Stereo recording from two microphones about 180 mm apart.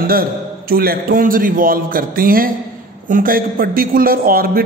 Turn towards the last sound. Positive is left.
turn(degrees=-55)  # may be behind; listen again after turning